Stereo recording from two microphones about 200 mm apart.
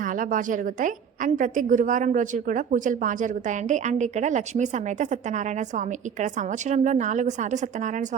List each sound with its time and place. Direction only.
0.0 s a woman's voice: 40° right (ahead or behind)